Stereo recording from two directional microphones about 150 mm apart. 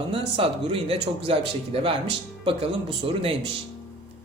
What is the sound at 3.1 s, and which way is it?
Speech, 40° right (ahead or behind).